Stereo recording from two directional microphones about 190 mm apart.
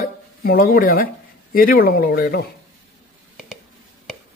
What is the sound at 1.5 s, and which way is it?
Speech, 50° left (ahead or behind).